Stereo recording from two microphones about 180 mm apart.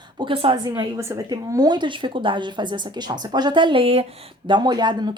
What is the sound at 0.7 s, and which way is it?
Speech, 15° right (ahead or behind).